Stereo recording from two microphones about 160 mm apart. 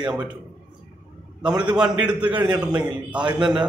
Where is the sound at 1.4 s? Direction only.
5° right (ahead or behind).